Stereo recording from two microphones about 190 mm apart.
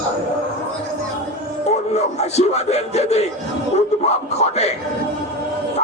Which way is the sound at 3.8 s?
35° left (ahead or behind).